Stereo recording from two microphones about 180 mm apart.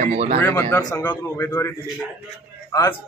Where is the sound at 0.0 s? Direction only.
40° right (ahead or behind).